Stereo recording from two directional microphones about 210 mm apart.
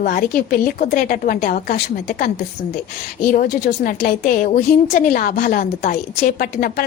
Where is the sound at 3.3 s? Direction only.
40° left (ahead or behind).